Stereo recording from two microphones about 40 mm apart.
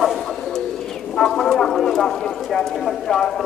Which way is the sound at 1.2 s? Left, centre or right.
Centre.